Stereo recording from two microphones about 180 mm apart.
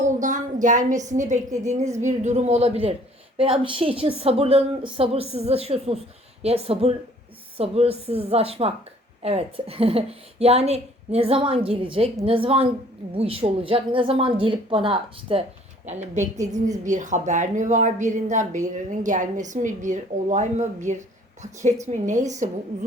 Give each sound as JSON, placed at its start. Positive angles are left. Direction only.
{"t": 0.0, "sound": "a sound", "side_deg": -45}
{"t": 1.0, "sound": "a woman's voice", "side_deg": -45}
{"t": 16.1, "sound": "a woman's voice", "side_deg": -40}